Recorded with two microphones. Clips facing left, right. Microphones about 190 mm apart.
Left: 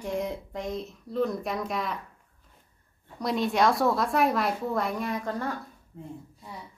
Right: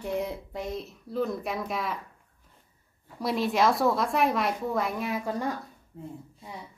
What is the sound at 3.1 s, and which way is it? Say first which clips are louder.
A woman's voice: even; centre (ahead or behind).